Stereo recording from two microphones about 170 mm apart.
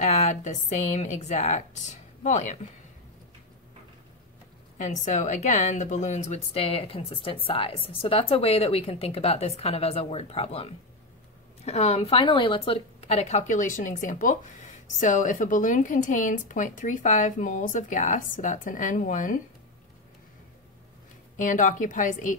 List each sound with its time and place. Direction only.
0.0 s speech: 40° left (ahead or behind)
4.7 s a woman's voice: 45° left (ahead or behind)
21.4 s speech: 50° left (ahead or behind)